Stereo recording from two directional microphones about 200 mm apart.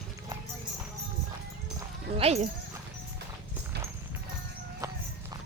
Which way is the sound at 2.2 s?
30° right (ahead or behind).